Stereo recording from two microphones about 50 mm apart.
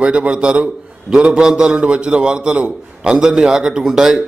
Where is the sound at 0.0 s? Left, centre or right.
Centre.